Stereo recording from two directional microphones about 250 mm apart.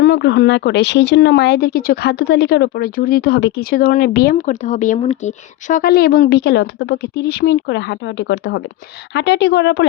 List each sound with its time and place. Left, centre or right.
0.0 s speech: left